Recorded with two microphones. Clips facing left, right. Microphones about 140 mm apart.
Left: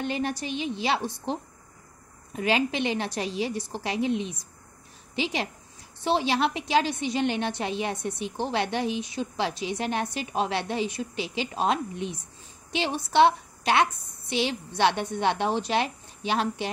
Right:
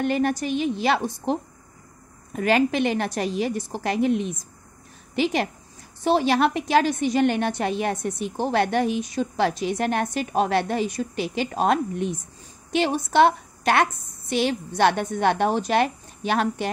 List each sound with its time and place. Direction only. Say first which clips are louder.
0.0 s a woman's voice: right 6 dB; 50° right (ahead or behind)
2.3 s a woman's voice: right 5 dB; 50° right (ahead or behind)